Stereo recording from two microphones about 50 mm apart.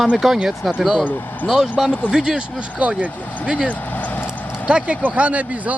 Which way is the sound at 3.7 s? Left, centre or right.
Left.